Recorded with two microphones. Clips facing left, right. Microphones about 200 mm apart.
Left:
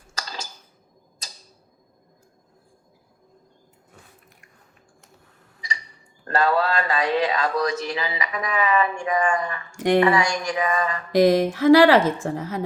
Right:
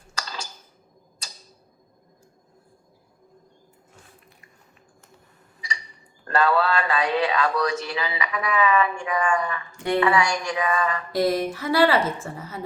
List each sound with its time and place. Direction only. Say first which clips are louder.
0.2 s a sound: even; 40° left (ahead or behind)
6.2 s speech: even; 35° left (ahead or behind)
9.7 s speech: left 6 dB; 90° left
10.0 s speech: left 2 dB; 40° left (ahead or behind)
11.1 s a woman's voice: left 7 dB; 90° left